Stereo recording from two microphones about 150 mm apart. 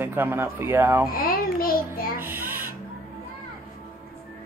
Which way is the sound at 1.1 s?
75° left (ahead or behind).